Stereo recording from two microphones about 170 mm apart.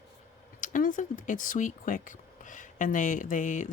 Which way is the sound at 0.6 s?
50° left (ahead or behind).